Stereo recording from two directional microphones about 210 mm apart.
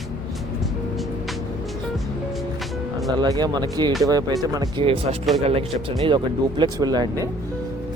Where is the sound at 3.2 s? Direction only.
20° right (ahead or behind).